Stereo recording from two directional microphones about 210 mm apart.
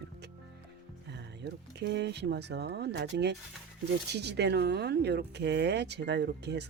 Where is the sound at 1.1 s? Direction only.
55° right (ahead or behind).